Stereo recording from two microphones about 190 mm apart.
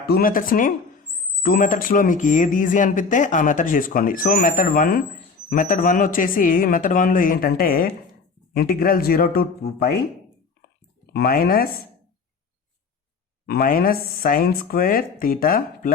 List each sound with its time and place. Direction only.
0.0 s speech: 50° left (ahead or behind)
11.1 s speech: 55° left (ahead or behind)
13.5 s speech: 50° left (ahead or behind)